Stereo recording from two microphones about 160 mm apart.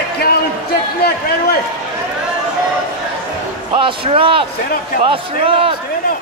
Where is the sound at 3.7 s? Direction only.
30° right (ahead or behind).